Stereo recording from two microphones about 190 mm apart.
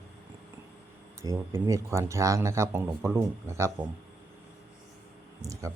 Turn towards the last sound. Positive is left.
turn(degrees=-15)  # may be behind; listen again after turning